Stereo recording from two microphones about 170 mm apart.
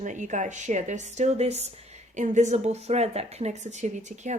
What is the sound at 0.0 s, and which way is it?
Speech, 45° right (ahead or behind).